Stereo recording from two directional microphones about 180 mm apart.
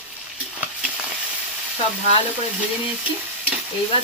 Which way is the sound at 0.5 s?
5° right (ahead or behind).